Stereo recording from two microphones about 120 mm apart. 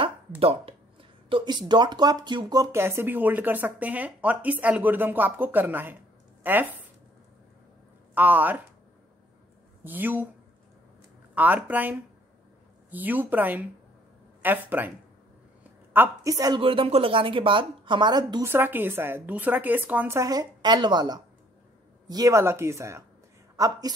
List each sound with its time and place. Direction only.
0.4 s speech: 55° right (ahead or behind)
1.3 s a woman's voice: 40° right (ahead or behind); by 6.7 s 15° right (ahead or behind)
8.1 s speech: 15° right (ahead or behind)
9.8 s speech: 15° right (ahead or behind)
11.3 s speech: 15° right (ahead or behind)
16.0 s speech: 15° right (ahead or behind)
16.3 s speech: 30° right (ahead or behind)
16.5 s a woman's voice: 50° right (ahead or behind)
18.4 s speech: 20° right (ahead or behind)
20.2 s a woman's voice: 30° right (ahead or behind)